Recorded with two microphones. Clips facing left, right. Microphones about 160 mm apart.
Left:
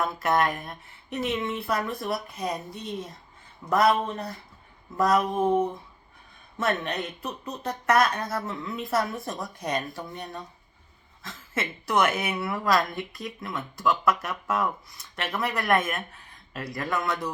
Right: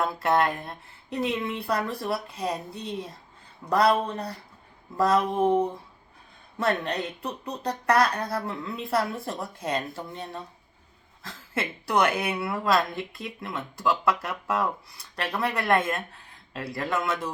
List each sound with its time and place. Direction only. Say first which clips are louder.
0.2 s speech: right 1 dB; 30° right (ahead or behind)
6.8 s speech: right 1 dB; 30° right (ahead or behind)